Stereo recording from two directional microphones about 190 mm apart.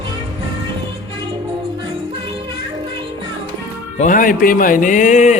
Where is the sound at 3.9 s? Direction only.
45° left (ahead or behind).